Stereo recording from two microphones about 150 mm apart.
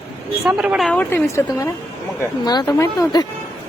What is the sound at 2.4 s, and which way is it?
Speech, 25° left (ahead or behind).